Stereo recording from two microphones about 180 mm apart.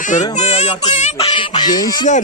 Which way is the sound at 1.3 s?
25° left (ahead or behind).